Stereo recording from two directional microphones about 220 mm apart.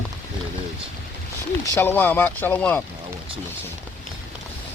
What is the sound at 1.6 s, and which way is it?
Speech, 10° left (ahead or behind).